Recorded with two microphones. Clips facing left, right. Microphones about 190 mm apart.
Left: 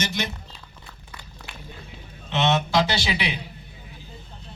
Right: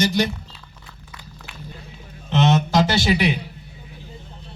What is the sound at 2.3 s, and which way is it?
Speech, 40° right (ahead or behind).